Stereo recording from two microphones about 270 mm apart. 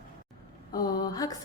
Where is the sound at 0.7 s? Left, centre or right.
Centre.